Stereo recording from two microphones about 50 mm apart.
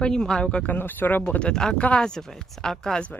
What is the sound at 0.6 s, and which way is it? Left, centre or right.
Speech, left.